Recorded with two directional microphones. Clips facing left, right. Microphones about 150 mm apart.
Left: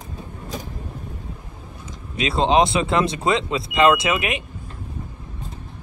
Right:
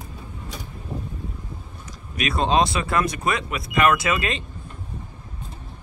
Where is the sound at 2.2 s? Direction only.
25° left (ahead or behind).